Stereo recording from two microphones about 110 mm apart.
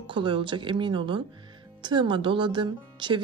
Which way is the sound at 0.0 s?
50° right (ahead or behind).